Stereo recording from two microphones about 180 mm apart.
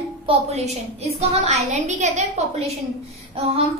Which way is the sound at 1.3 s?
40° right (ahead or behind).